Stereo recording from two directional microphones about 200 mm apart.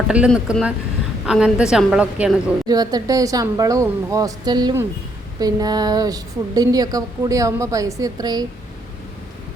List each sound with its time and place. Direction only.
0.1 s a woman's voice: 5° right (ahead or behind)
2.6 s a woman's voice: 20° right (ahead or behind)